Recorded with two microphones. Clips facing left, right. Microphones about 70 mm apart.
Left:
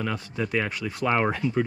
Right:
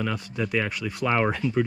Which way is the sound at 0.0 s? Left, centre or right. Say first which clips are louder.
Right 1 dB; left.